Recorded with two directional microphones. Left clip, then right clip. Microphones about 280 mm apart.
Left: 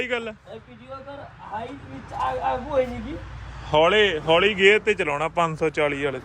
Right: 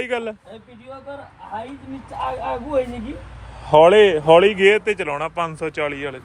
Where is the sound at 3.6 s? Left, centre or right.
Centre.